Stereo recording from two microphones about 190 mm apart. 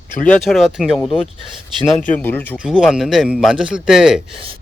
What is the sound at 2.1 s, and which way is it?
Speech, 10° left (ahead or behind).